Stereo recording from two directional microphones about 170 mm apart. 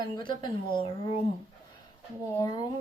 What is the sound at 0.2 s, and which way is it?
Speech, 30° left (ahead or behind).